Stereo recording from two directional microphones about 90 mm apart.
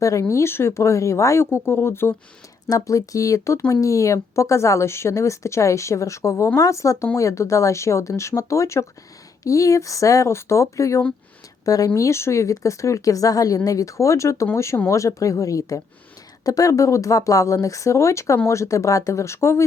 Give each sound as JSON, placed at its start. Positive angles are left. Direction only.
{"t": 0.0, "sound": "speech", "side_deg": 35}
{"t": 2.6, "sound": "speech", "side_deg": 40}